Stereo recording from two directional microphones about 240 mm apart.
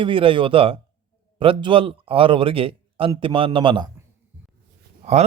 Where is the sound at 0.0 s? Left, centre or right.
Right.